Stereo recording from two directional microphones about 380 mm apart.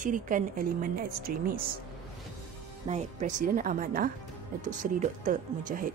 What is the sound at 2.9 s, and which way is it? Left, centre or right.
Speech, centre.